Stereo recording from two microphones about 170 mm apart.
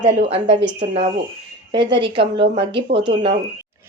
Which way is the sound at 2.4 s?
30° right (ahead or behind).